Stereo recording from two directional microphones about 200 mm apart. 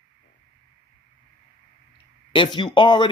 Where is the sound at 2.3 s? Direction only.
25° left (ahead or behind).